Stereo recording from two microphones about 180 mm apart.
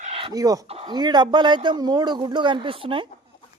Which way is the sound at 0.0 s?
30° right (ahead or behind).